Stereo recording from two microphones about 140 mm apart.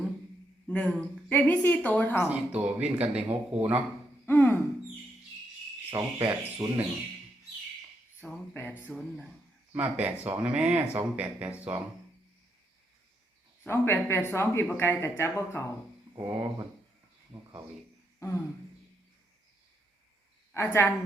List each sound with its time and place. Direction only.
0.7 s speech: 5° left (ahead or behind)
2.3 s speech: 10° right (ahead or behind)
4.3 s speech: 15° left (ahead or behind)
5.9 s cricket: 20° right (ahead or behind)
8.2 s speech: 15° left (ahead or behind)
9.7 s speech: 10° right (ahead or behind)
13.7 s speech: 15° left (ahead or behind)
16.1 s cricket: 25° right (ahead or behind)
17.3 s speech: 30° right (ahead or behind)
20.5 s a woman's voice: 15° left (ahead or behind)